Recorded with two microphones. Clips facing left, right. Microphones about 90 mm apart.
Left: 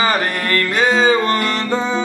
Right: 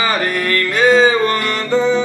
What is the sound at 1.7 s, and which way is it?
Music, 5° left (ahead or behind).